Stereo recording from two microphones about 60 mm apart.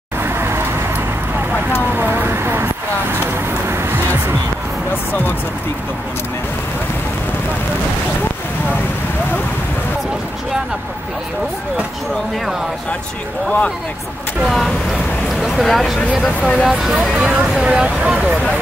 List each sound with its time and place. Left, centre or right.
0.2 s vehicle: right
2.0 s vehicle: right
3.6 s music: right
14.4 s speech: centre
16.3 s speech: left
17.1 s speech: centre